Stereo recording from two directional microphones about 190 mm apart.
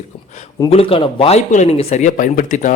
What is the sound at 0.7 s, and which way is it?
Speech, 30° left (ahead or behind).